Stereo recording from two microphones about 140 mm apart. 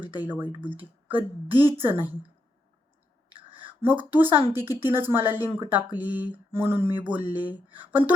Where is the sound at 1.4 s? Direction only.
40° right (ahead or behind).